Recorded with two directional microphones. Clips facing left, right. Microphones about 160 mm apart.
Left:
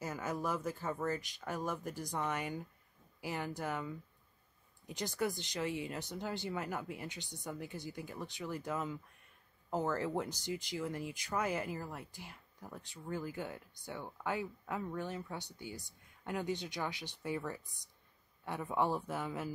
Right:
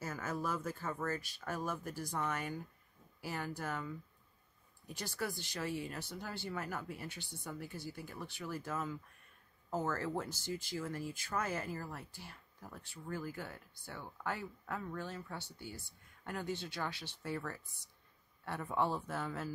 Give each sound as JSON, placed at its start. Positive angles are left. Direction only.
{"t": 0.0, "sound": "speech", "side_deg": 15}